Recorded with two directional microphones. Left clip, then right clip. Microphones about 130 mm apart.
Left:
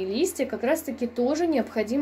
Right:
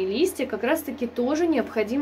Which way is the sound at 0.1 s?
40° left (ahead or behind).